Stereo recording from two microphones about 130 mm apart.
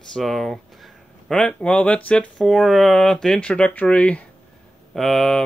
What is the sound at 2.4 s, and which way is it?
Speech, centre (ahead or behind).